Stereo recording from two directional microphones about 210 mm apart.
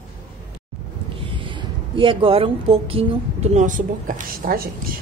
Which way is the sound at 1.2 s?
25° right (ahead or behind).